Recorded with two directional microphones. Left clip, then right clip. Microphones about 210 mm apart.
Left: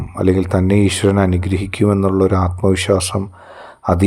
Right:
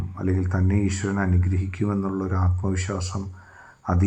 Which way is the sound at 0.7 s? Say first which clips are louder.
Left 13 dB; 55° left (ahead or behind).